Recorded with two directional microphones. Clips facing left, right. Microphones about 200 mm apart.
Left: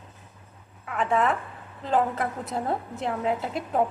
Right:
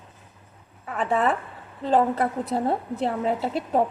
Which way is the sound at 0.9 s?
35° right (ahead or behind).